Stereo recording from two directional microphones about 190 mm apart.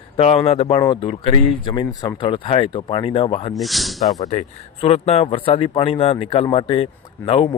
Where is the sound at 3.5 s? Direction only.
Centre (ahead or behind).